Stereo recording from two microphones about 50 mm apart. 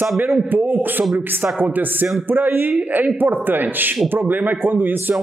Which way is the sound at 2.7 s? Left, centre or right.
Right.